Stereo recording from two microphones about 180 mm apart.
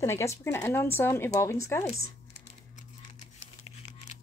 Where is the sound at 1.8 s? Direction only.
35° left (ahead or behind).